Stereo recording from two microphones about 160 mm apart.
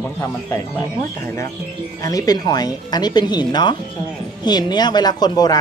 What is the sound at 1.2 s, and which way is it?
Speech, 15° left (ahead or behind).